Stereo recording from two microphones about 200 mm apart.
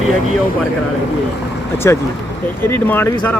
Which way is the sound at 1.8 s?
15° left (ahead or behind).